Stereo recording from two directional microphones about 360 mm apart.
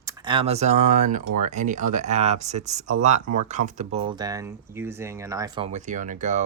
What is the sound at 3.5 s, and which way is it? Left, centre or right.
Speech, centre.